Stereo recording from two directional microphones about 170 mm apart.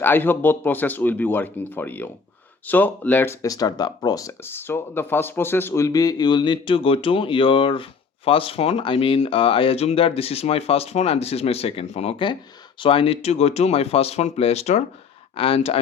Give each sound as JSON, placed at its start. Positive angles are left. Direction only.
{"t": 0.0, "sound": "speech", "side_deg": 10}